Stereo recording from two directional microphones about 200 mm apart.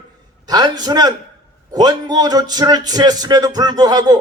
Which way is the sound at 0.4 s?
20° right (ahead or behind).